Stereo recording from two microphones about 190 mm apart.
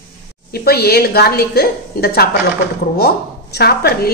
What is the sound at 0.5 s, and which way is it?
A woman's voice, 55° left (ahead or behind).